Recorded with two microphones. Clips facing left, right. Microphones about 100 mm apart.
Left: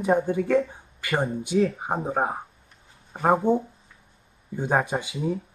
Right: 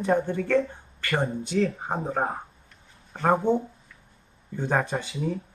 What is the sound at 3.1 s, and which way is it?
Speech, 10° left (ahead or behind).